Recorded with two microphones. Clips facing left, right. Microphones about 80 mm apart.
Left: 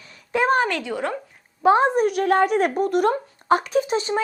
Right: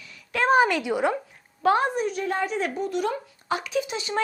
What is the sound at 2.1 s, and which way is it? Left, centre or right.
Speech, left.